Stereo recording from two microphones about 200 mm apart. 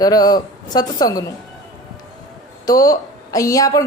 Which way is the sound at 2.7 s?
15° left (ahead or behind).